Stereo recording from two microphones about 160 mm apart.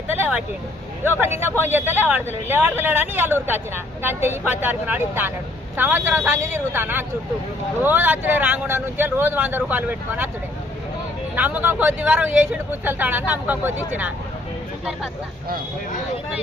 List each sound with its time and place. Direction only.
0.2 s speech: 10° right (ahead or behind)
11.3 s speech: 10° right (ahead or behind)